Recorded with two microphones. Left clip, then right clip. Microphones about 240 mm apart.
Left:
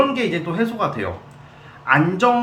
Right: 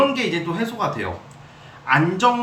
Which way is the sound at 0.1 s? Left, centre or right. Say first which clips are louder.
Left 1 dB; centre.